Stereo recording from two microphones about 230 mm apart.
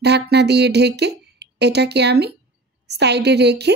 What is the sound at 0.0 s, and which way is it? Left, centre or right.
A woman's voice, right.